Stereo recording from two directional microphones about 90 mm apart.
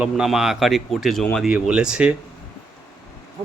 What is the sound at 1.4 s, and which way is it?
Speech, 10° right (ahead or behind).